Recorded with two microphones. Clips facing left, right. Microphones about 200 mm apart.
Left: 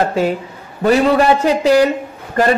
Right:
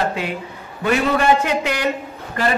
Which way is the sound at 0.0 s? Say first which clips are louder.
Left 7 dB; 40° left (ahead or behind).